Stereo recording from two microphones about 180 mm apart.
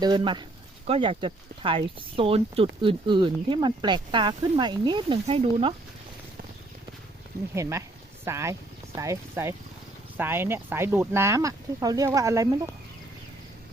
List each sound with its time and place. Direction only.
0.0 s speech: 25° right (ahead or behind)
7.5 s speech: 15° right (ahead or behind)